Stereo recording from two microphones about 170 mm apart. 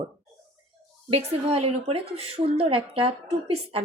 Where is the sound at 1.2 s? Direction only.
35° right (ahead or behind).